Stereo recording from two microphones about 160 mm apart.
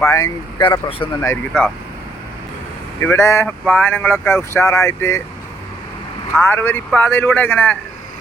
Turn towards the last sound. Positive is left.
turn(degrees=15)  # may be behind; listen again after turning